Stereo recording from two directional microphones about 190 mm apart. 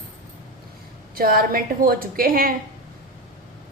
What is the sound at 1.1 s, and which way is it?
Speech, 50° right (ahead or behind).